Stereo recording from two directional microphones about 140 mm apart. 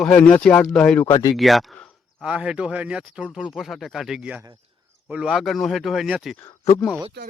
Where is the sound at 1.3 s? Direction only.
Centre (ahead or behind).